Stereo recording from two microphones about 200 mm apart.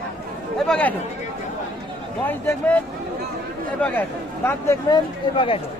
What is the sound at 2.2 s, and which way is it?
Speech, 10° left (ahead or behind).